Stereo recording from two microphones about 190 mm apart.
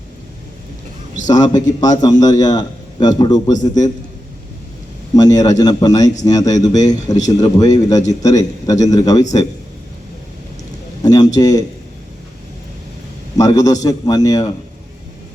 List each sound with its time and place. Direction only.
1.3 s a man's voice: 20° left (ahead or behind)
5.1 s a man's voice: 20° left (ahead or behind)
11.0 s a sound: 20° left (ahead or behind)
11.3 s a man's voice: 20° left (ahead or behind)
13.3 s a man's voice: 20° left (ahead or behind)